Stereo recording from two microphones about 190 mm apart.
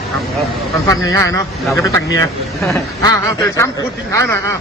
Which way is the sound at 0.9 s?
15° left (ahead or behind).